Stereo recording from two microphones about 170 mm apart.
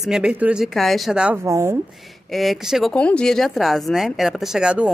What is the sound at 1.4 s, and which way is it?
Speech, 15° right (ahead or behind).